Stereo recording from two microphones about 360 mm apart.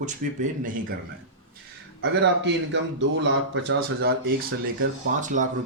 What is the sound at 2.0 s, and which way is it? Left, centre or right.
Speech, right.